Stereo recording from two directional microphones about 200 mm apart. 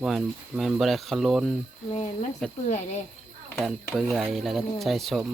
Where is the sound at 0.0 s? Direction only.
Centre (ahead or behind).